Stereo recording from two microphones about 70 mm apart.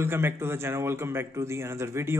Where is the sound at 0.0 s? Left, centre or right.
Right.